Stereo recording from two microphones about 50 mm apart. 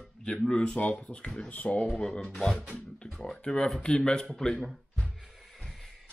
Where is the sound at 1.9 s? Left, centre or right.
Centre.